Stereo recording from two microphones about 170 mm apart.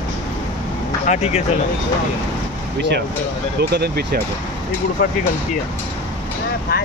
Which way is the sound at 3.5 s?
70° right (ahead or behind).